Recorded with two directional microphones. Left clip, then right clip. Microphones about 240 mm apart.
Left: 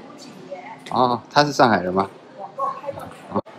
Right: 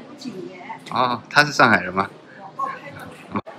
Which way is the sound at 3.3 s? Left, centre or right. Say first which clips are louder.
Left 3 dB; centre.